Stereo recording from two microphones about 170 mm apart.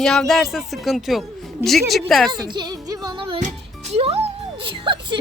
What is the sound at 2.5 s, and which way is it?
Music, 25° right (ahead or behind).